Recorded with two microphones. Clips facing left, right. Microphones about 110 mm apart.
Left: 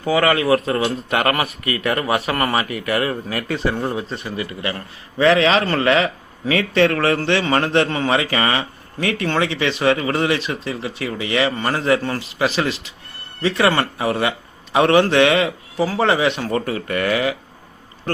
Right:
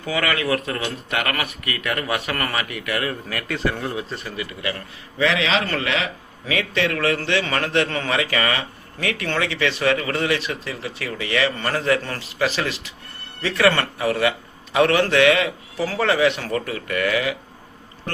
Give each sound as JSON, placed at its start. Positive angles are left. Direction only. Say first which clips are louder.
{"t": 0.0, "sound": "a man's voice", "louder": "left 6 dB", "side_deg": 30}
{"t": 5.1, "sound": "a man's voice", "louder": "left 6 dB", "side_deg": 45}